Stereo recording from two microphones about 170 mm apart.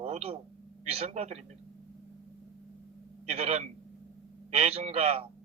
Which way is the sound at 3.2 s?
40° right (ahead or behind).